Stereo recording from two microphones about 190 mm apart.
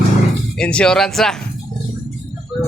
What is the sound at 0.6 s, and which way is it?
Speech, 5° left (ahead or behind).